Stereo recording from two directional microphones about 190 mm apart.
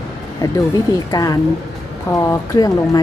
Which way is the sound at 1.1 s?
20° left (ahead or behind).